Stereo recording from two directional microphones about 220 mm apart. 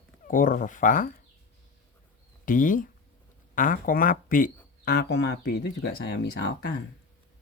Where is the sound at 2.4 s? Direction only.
40° left (ahead or behind).